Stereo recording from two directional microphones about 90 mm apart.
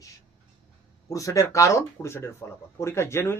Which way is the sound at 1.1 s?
40° left (ahead or behind).